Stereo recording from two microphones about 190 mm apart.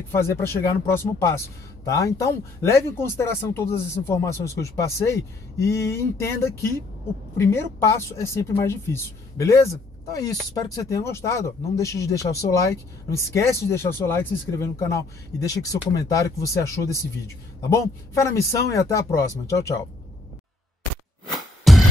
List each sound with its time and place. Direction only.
0.1 s speech: 15° left (ahead or behind)
21.7 s music: centre (ahead or behind)